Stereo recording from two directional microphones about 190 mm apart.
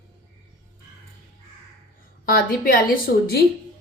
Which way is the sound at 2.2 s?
50° left (ahead or behind).